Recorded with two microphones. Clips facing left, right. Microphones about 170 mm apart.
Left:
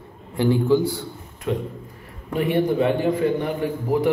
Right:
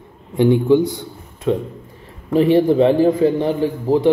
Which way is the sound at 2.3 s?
25° right (ahead or behind).